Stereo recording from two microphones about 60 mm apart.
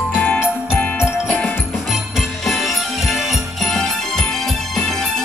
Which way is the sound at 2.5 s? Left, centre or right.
Centre.